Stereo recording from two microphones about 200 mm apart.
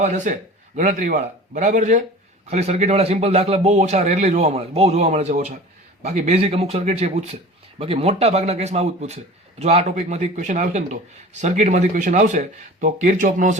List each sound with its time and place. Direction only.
0.0 s a man's voice: 35° right (ahead or behind)